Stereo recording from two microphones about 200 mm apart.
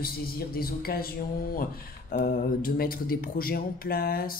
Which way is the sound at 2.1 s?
45° left (ahead or behind).